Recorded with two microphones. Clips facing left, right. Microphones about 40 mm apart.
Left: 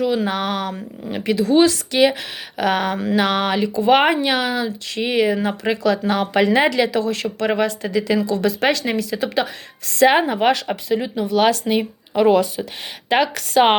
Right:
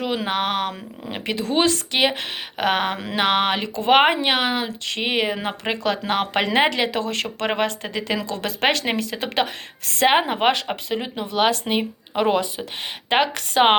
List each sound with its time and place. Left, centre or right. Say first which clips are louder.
0.0 s speech: left 3 dB; right
8.3 s a woman's voice: left 3 dB; right
10.1 s a woman's voice: right 1 dB; right